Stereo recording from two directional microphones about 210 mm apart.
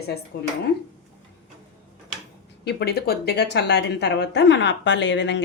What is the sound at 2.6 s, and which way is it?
Speech, 50° left (ahead or behind).